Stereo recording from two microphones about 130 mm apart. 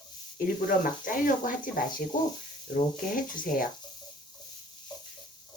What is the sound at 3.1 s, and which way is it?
Speech, 90° left.